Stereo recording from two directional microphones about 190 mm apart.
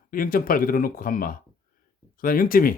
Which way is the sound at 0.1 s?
50° left (ahead or behind).